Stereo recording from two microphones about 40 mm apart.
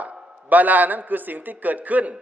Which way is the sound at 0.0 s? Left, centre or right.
Right.